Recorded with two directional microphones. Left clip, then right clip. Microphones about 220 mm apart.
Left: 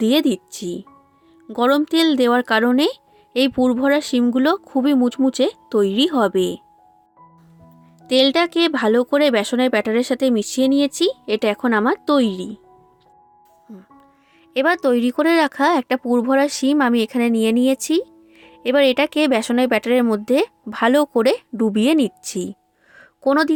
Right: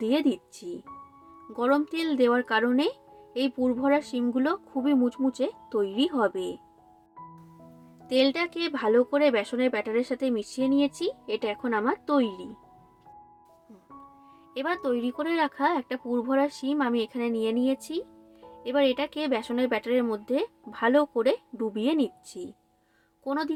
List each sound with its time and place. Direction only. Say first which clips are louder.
0.0 s speech: left 8 dB; 40° left (ahead or behind)
8.0 s speech: left 9 dB; 40° left (ahead or behind)
13.7 s speech: left 3 dB; 40° left (ahead or behind)
23.0 s a sound: left 13 dB; 40° left (ahead or behind)